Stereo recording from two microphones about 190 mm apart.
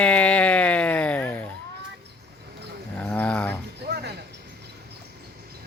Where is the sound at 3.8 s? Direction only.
60° right (ahead or behind).